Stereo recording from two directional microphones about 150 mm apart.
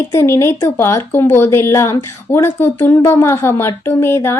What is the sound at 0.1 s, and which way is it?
Speech, 20° left (ahead or behind).